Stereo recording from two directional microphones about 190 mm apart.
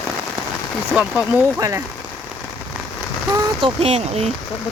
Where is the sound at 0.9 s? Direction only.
5° right (ahead or behind).